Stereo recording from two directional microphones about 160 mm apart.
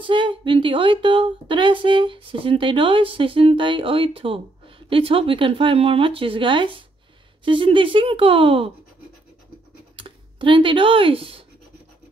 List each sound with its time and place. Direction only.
0.0 s speech: 30° right (ahead or behind)
9.9 s speech: 30° right (ahead or behind)